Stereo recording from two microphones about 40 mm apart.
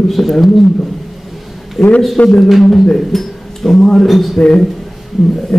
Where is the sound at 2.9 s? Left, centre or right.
Centre.